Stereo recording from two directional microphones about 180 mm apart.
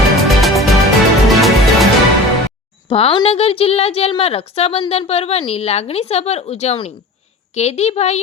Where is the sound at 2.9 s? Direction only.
30° left (ahead or behind).